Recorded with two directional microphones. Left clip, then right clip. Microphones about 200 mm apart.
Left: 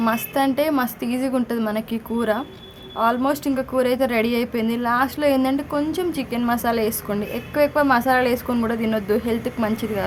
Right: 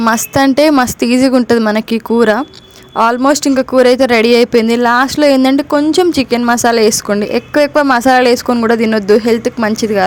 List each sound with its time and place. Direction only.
0.0 s speech: 35° right (ahead or behind)